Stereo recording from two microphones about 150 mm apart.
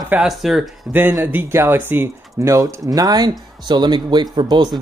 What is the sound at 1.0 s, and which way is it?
Speech, 10° right (ahead or behind).